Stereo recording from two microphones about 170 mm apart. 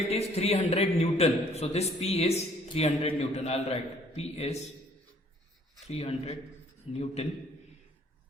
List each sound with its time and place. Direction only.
0.1 s a man's voice: 40° left (ahead or behind)
5.8 s a man's voice: 35° left (ahead or behind)